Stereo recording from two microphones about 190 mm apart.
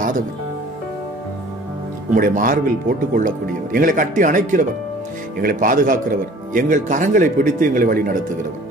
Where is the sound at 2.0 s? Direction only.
45° right (ahead or behind).